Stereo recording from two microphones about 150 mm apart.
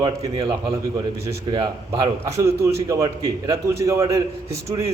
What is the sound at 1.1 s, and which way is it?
A man's voice, 20° right (ahead or behind).